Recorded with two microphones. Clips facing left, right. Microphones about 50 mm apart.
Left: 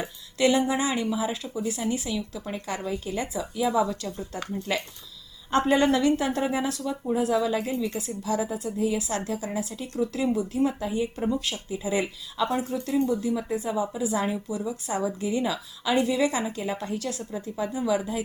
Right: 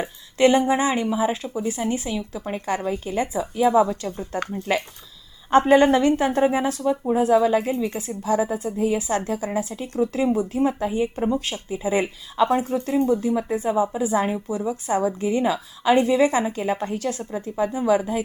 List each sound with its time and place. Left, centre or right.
0.0 s a woman's voice: right